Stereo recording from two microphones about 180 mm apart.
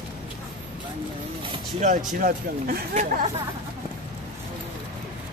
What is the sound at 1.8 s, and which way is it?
Speech, 45° right (ahead or behind).